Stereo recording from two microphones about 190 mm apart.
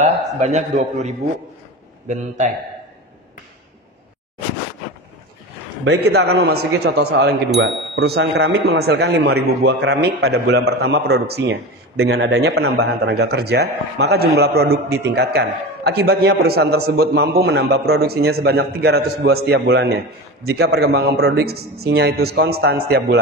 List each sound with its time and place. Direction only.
0.0 s a man's voice: 40° right (ahead or behind)
5.9 s speech: 60° right (ahead or behind)